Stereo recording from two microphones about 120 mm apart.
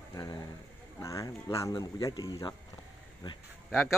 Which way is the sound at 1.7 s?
35° left (ahead or behind).